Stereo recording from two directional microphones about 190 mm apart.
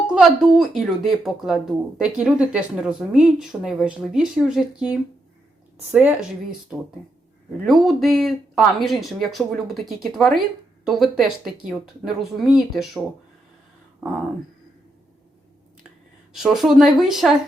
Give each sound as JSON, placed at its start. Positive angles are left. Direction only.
{"t": 0.1, "sound": "speech", "side_deg": -5}
{"t": 7.6, "sound": "speech", "side_deg": 0}
{"t": 16.3, "sound": "speech", "side_deg": 0}